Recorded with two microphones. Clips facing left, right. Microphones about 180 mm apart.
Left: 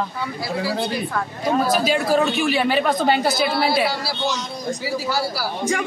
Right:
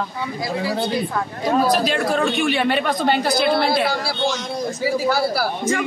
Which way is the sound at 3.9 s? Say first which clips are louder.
Right 2 dB; 50° right (ahead or behind).